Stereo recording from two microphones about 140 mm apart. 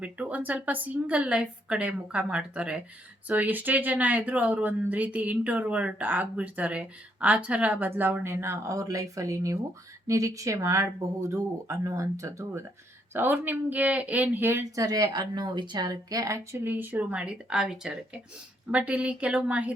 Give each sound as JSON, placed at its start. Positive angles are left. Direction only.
{"t": 0.0, "sound": "a woman's voice", "side_deg": -10}
{"t": 14.8, "sound": "a woman's voice", "side_deg": -30}